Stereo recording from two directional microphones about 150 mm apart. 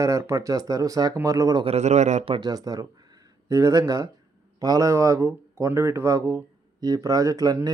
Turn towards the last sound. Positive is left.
turn(degrees=-25)  # may be behind; listen again after turning